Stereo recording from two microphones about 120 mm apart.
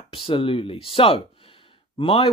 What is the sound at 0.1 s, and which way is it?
Speech, 45° left (ahead or behind).